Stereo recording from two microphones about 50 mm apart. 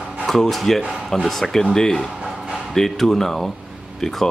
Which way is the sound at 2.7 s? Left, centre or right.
Centre.